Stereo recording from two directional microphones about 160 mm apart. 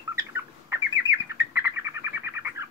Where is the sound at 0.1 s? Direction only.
15° right (ahead or behind).